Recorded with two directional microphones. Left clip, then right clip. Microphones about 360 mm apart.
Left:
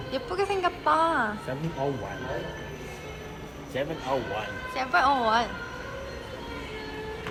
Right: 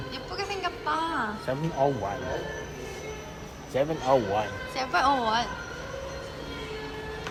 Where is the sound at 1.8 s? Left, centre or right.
Right.